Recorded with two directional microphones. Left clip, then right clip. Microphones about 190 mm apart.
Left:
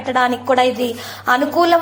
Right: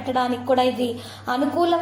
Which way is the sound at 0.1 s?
15° left (ahead or behind).